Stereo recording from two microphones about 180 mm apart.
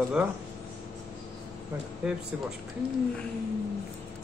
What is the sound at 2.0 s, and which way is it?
Speech, 5° right (ahead or behind).